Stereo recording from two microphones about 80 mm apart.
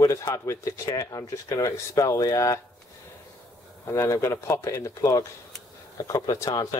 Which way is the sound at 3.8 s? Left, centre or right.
Left.